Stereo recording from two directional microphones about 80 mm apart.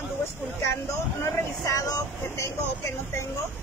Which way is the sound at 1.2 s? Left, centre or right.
Left.